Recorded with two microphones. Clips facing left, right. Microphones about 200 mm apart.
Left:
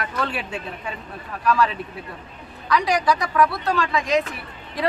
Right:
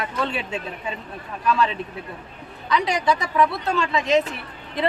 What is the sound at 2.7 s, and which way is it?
A woman's voice, 25° right (ahead or behind).